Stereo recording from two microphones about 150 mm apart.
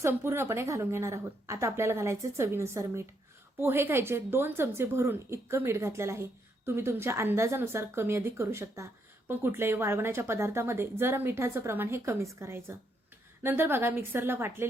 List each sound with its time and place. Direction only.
0.0 s a woman's voice: 15° right (ahead or behind)